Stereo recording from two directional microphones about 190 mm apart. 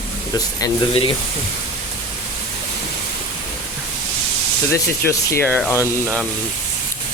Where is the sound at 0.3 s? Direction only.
25° left (ahead or behind).